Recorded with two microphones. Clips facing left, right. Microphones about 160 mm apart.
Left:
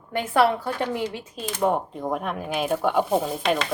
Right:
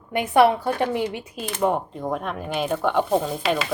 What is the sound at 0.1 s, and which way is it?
Speech, 15° right (ahead or behind).